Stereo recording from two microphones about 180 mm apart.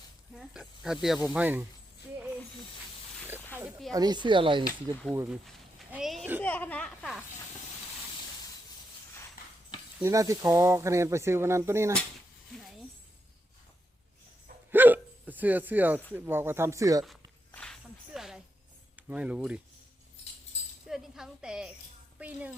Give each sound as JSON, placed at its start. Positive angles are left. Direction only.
{"t": 0.3, "sound": "speech", "side_deg": 0}
{"t": 3.9, "sound": "speech", "side_deg": -20}
{"t": 5.3, "sound": "a sound", "side_deg": -5}
{"t": 10.0, "sound": "speech", "side_deg": -15}
{"t": 14.7, "sound": "hiccup", "side_deg": -10}
{"t": 16.1, "sound": "speech", "side_deg": -10}
{"t": 17.5, "sound": "a sound", "side_deg": 5}
{"t": 18.9, "sound": "speech", "side_deg": -10}
{"t": 20.8, "sound": "a sound", "side_deg": -5}
{"t": 22.2, "sound": "speech", "side_deg": -10}